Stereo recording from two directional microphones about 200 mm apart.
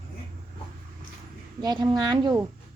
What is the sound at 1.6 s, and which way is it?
Speech, 20° right (ahead or behind).